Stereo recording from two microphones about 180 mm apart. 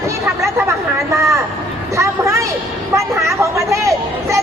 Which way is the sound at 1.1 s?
15° right (ahead or behind).